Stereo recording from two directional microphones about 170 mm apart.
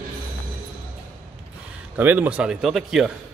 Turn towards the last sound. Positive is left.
turn(degrees=0)  # may be behind; listen again after turning